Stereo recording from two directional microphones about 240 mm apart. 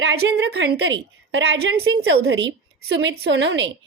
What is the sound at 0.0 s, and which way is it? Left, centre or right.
A woman's voice, right.